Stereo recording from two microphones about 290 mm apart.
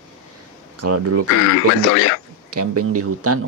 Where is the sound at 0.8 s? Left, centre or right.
Right.